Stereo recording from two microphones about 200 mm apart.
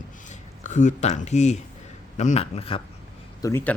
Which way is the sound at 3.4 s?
15° left (ahead or behind).